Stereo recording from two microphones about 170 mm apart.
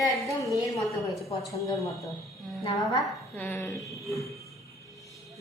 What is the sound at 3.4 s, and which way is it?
Speech, 10° left (ahead or behind).